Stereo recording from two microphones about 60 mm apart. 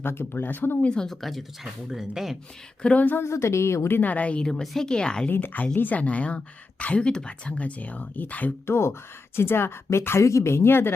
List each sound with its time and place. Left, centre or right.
0.0 s speech: left
0.9 s speech: centre
2.8 s speech: left
3.2 s speech: left
3.9 s speech: left
5.3 s speech: left
8.6 s speech: left